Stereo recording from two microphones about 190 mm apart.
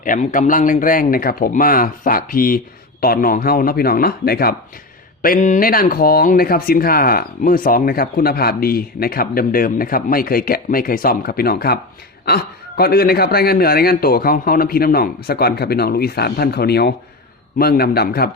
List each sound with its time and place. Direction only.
0.0 s speech: 45° left (ahead or behind)